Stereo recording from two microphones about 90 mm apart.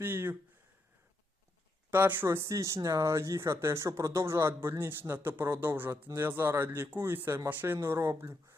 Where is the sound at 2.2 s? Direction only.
35° right (ahead or behind).